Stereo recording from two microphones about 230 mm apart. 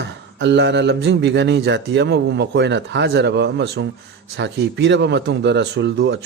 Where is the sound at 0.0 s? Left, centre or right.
Right.